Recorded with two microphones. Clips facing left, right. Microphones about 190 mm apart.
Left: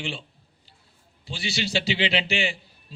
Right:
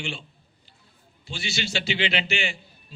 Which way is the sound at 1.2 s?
35° left (ahead or behind).